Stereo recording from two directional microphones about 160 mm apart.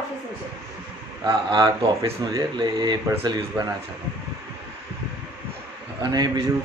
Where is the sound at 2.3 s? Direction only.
25° right (ahead or behind).